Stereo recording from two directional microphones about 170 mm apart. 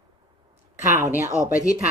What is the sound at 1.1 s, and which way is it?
Speech, 20° left (ahead or behind).